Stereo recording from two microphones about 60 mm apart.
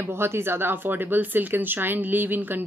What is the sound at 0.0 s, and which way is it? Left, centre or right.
Speech, right.